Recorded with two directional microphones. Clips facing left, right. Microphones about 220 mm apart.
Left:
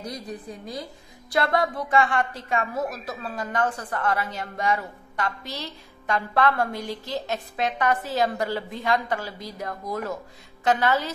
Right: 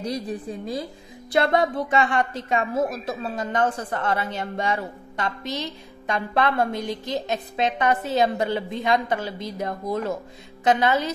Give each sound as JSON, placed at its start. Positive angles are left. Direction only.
{"t": 0.0, "sound": "a woman's voice", "side_deg": -30}